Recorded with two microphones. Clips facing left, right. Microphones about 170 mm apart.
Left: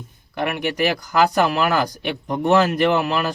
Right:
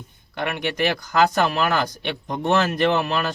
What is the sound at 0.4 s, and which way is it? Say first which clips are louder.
Speech: left 2 dB; 10° left (ahead or behind).